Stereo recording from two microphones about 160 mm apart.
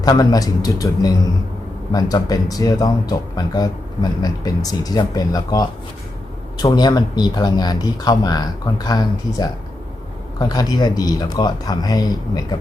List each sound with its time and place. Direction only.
0.0 s speech: 25° left (ahead or behind)
10.5 s speech: 25° left (ahead or behind)